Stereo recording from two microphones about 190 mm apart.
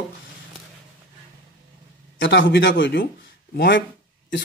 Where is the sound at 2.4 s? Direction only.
60° left (ahead or behind).